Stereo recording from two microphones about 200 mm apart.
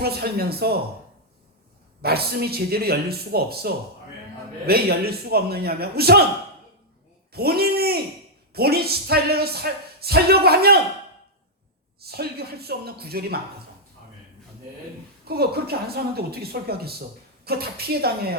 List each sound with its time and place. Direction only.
0.0 s speech: 50° right (ahead or behind)
2.0 s speech: 50° right (ahead or behind)
7.3 s speech: 50° right (ahead or behind)
11.9 s speech: 50° right (ahead or behind)
15.2 s a woman's voice: 50° right (ahead or behind)